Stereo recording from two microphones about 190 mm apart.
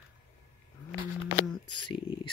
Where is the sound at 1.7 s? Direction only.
25° left (ahead or behind).